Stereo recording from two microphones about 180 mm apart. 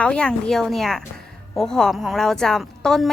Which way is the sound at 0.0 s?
5° left (ahead or behind).